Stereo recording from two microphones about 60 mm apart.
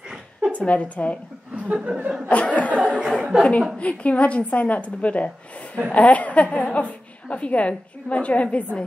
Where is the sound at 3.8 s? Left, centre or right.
Left.